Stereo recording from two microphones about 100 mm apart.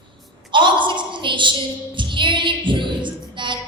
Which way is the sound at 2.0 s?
55° right (ahead or behind).